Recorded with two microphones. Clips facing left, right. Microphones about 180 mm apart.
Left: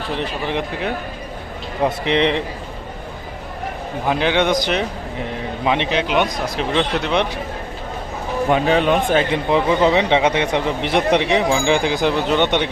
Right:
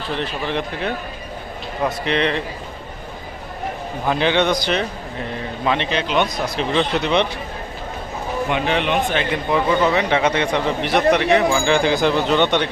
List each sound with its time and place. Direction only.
0.2 s a man's voice: 15° left (ahead or behind)
4.0 s a man's voice: 10° left (ahead or behind)
8.4 s a man's voice: 40° left (ahead or behind)
9.3 s a man's voice: 25° left (ahead or behind)